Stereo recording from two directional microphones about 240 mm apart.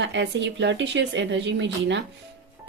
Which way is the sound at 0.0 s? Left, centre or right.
Right.